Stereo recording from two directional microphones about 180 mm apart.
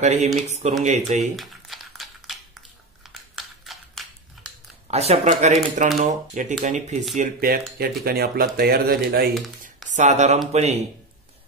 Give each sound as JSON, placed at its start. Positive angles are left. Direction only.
{"t": 0.0, "sound": "speech", "side_deg": -40}
{"t": 1.3, "sound": "crumpling", "side_deg": 0}
{"t": 3.3, "sound": "a sound", "side_deg": 0}
{"t": 4.9, "sound": "speech", "side_deg": -35}
{"t": 7.2, "sound": "speech", "side_deg": -55}
{"t": 9.8, "sound": "speech", "side_deg": -40}